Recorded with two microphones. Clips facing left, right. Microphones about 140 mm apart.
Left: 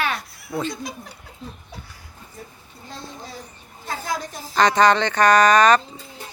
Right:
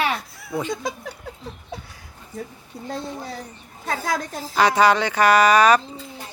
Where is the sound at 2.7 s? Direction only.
75° right (ahead or behind).